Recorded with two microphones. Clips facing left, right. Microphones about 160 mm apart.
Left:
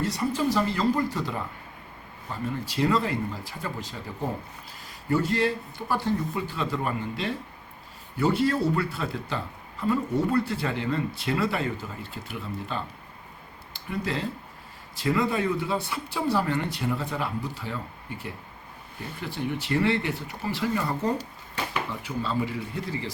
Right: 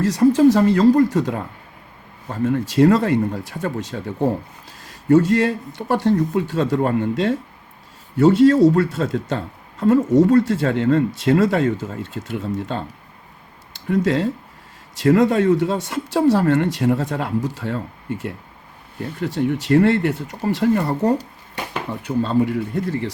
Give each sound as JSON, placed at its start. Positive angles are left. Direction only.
{"t": 0.0, "sound": "speech", "side_deg": -90}
{"t": 0.6, "sound": "speech", "side_deg": -80}
{"t": 4.9, "sound": "speech", "side_deg": -90}
{"t": 13.7, "sound": "speech", "side_deg": -80}
{"t": 17.5, "sound": "speech", "side_deg": -75}
{"t": 20.6, "sound": "speech", "side_deg": -55}
{"t": 22.2, "sound": "a man's voice", "side_deg": -60}